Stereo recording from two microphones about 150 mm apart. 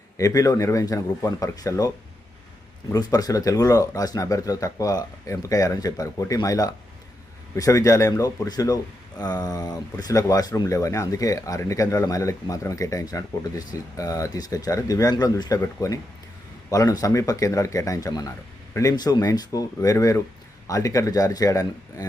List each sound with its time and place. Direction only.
0.2 s speech: 25° left (ahead or behind)
2.9 s speech: 25° left (ahead or behind)